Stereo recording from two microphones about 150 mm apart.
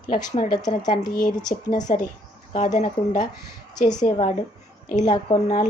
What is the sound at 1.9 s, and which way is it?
Speech, 65° left (ahead or behind).